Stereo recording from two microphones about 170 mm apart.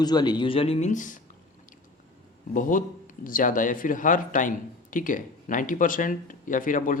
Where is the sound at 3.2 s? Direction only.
50° left (ahead or behind).